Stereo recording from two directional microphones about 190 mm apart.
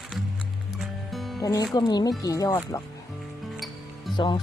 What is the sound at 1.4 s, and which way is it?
Speech, 20° left (ahead or behind).